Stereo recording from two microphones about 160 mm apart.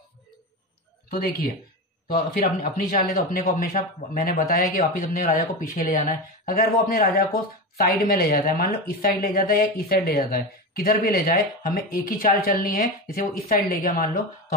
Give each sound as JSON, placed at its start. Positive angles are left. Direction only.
{"t": 2.1, "sound": "speech", "side_deg": 65}